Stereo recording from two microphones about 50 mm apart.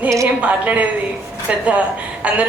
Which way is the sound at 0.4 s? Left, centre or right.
Right.